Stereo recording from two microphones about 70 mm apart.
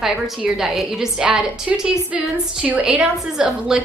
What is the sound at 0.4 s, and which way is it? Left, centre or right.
A woman's voice, centre.